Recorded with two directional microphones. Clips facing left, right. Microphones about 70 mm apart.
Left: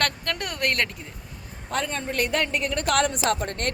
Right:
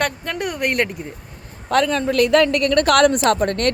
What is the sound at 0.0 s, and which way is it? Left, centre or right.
Speech, centre.